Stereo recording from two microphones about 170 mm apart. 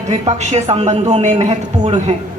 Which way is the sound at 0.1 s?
40° right (ahead or behind).